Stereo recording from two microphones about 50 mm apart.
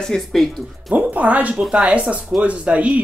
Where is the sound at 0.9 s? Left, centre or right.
Right.